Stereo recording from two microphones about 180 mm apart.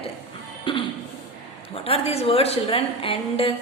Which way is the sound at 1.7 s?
35° left (ahead or behind).